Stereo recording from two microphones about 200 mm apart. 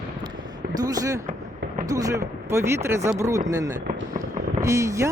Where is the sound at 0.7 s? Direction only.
20° right (ahead or behind).